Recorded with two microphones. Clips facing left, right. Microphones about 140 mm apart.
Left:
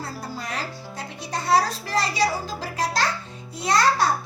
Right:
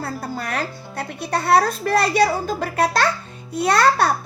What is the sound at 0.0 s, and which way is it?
A child's voice, 60° right (ahead or behind).